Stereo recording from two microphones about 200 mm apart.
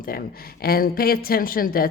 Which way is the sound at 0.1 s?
50° left (ahead or behind).